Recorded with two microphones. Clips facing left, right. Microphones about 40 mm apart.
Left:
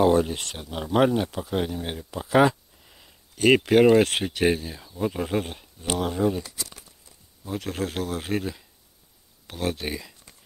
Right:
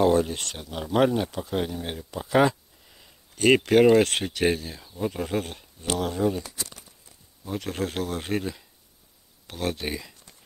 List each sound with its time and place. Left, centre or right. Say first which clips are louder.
0.0 s speech: left 1 dB; centre
7.4 s speech: even; centre